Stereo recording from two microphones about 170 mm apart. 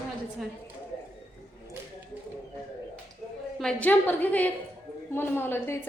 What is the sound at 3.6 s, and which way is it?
A woman's voice, 10° left (ahead or behind).